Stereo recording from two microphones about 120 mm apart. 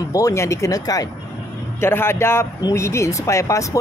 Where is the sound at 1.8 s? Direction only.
20° left (ahead or behind).